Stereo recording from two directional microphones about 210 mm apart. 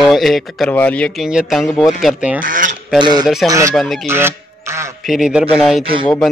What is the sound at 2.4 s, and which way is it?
Speech, 40° right (ahead or behind).